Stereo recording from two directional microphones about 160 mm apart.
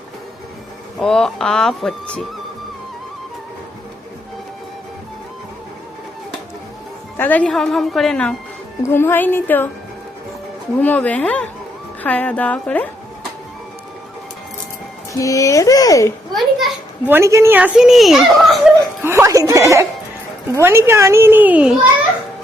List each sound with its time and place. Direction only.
0.9 s speech: 5° left (ahead or behind)
7.2 s speech: 10° left (ahead or behind)
10.8 s speech: 10° left (ahead or behind)
15.1 s speech: 20° left (ahead or behind)
16.3 s speech: centre (ahead or behind)
17.1 s speech: 15° right (ahead or behind)
17.6 s speech: 5° right (ahead or behind)
19.0 s speech: 15° right (ahead or behind)